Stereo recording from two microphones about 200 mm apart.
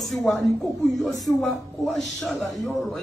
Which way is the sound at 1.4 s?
5° left (ahead or behind).